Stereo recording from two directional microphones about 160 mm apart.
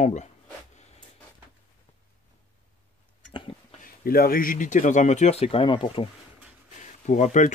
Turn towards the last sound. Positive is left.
turn(degrees=50)  # may be behind; listen again after turning